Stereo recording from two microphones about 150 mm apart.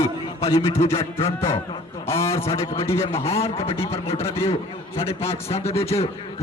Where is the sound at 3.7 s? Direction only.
20° left (ahead or behind).